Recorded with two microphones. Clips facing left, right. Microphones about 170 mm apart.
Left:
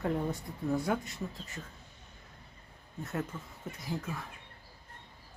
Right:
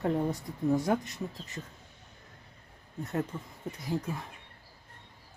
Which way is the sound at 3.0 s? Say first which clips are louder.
Right 4 dB; 15° right (ahead or behind).